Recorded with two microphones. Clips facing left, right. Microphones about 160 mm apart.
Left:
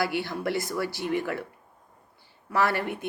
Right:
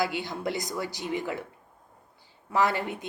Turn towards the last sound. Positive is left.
turn(degrees=-20)  # may be behind; listen again after turning